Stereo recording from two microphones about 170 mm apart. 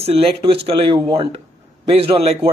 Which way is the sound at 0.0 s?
35° right (ahead or behind).